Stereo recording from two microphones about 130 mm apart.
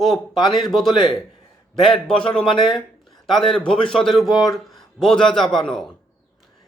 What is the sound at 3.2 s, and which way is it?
A man's voice, 5° left (ahead or behind).